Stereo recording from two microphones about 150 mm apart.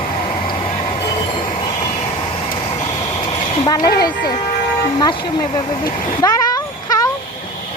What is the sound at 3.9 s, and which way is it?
Speech, 90° left.